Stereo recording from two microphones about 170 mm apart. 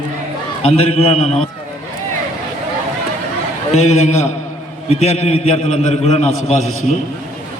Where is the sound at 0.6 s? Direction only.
35° left (ahead or behind).